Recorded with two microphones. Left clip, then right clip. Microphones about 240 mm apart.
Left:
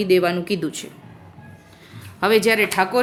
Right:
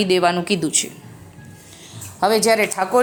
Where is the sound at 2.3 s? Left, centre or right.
Centre.